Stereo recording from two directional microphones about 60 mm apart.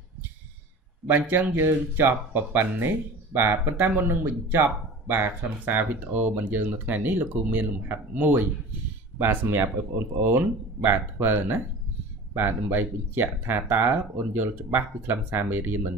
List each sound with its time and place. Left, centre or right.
1.0 s speech: right